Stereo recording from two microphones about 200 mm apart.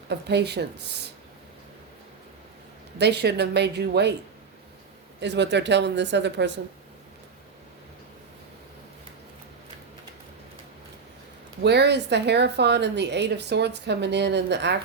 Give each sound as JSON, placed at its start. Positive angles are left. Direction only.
{"t": 0.1, "sound": "a woman's voice", "side_deg": -55}
{"t": 3.0, "sound": "a woman's voice", "side_deg": -55}
{"t": 5.2, "sound": "a woman's voice", "side_deg": -60}
{"t": 11.6, "sound": "a woman's voice", "side_deg": -55}